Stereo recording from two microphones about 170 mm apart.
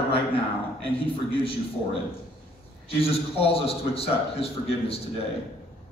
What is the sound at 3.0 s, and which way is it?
A man's voice, 35° left (ahead or behind).